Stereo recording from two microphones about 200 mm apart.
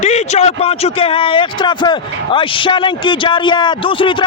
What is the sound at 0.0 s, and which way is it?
A man's voice, 35° left (ahead or behind).